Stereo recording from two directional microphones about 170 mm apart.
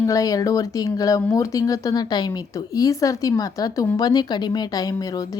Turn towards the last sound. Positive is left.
turn(degrees=20)  # may be behind; listen again after turning